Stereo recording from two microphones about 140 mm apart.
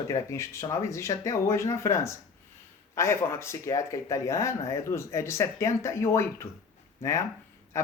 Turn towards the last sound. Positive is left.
turn(degrees=20)  # may be behind; listen again after turning